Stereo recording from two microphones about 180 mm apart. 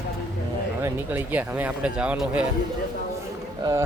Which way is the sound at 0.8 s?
10° right (ahead or behind).